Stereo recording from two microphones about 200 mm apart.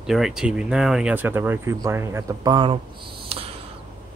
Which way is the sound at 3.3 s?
30° right (ahead or behind).